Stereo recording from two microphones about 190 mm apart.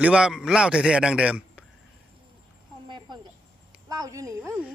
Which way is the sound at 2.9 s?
25° right (ahead or behind).